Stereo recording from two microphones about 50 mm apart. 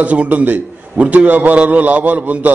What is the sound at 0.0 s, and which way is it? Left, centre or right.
A man's voice, right.